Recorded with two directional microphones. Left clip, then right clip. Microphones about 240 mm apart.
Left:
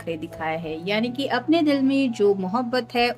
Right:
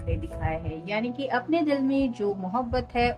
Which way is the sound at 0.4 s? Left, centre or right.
Left.